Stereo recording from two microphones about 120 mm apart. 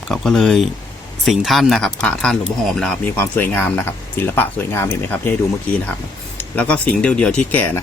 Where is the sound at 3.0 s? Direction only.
15° left (ahead or behind).